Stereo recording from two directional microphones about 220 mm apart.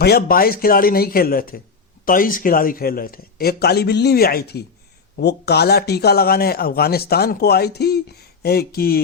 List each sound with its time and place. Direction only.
0.0 s a man's voice: 45° left (ahead or behind)